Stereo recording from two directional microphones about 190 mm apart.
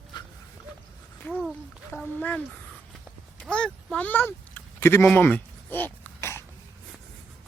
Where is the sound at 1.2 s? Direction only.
10° left (ahead or behind).